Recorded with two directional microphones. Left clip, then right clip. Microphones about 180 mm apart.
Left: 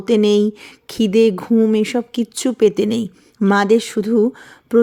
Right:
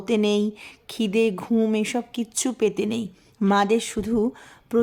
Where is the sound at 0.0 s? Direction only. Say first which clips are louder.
Left 8 dB; 25° left (ahead or behind).